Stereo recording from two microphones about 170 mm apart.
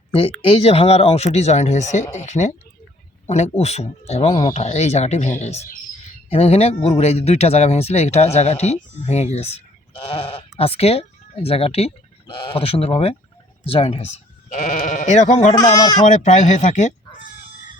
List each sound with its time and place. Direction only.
0.1 s speech: 35° left (ahead or behind)
15.5 s speech: 20° left (ahead or behind)
16.0 s speech: 45° left (ahead or behind)